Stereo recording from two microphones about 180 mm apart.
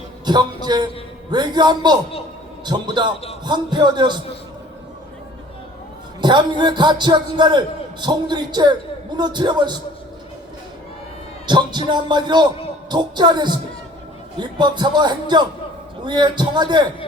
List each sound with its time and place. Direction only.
0.3 s speech: 25° right (ahead or behind)
6.2 s speech: 25° right (ahead or behind)
11.4 s music: 25° right (ahead or behind)
11.9 s speech: 25° right (ahead or behind)